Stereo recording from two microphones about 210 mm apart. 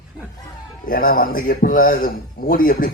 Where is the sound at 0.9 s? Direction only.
45° left (ahead or behind).